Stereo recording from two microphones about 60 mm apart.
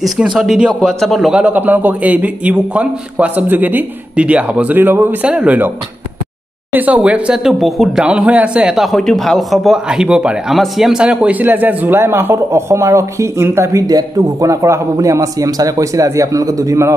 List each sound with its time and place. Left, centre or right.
0.4 s speech: centre
1.5 s a man's voice: right
5.2 s a man's voice: right
6.7 s a man's voice: right
7.4 s speech: centre
7.9 s a man's voice: centre
8.6 s speech: centre
9.8 s speech: centre
10.5 s speech: centre
11.2 s speech: right
13.8 s a man's voice: right
15.8 s a man's voice: right